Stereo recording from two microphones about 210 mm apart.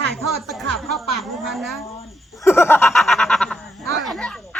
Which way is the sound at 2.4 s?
10° left (ahead or behind).